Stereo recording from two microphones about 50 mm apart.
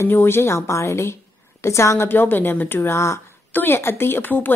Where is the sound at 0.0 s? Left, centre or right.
Left.